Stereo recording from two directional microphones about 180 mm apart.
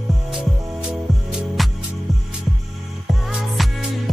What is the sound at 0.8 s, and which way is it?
Music, centre (ahead or behind).